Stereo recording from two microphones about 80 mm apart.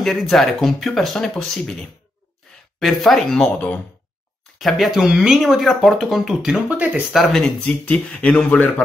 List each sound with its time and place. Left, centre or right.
0.0 s speech: centre
3.4 s speech: centre
4.6 s speech: centre
6.7 s speech: right
7.2 s speech: centre
7.8 s speech: left